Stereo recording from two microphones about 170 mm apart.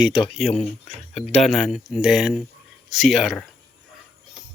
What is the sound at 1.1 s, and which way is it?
Speech, 40° left (ahead or behind).